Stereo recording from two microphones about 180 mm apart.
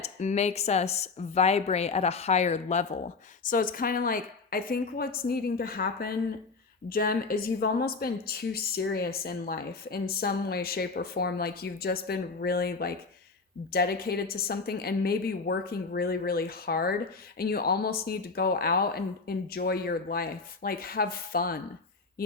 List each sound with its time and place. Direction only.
0.0 s speech: 40° left (ahead or behind); by 21.6 s 55° left (ahead or behind)